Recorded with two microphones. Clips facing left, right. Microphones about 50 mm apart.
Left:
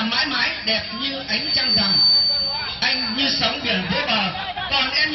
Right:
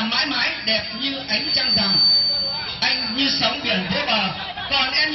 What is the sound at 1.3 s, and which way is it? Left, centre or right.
A man's voice, centre.